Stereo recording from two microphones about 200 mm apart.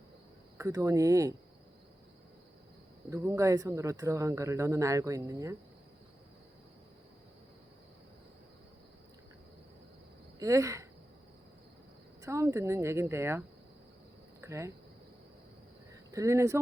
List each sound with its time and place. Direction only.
0.5 s speech: 15° right (ahead or behind)
3.1 s speech: 15° right (ahead or behind)
10.4 s speech: 15° right (ahead or behind)
12.2 s speech: 15° right (ahead or behind)
14.4 s speech: 15° right (ahead or behind)
16.1 s speech: 15° right (ahead or behind)